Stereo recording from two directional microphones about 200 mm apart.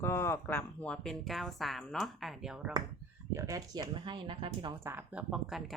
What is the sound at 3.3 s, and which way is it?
Speech, 15° right (ahead or behind).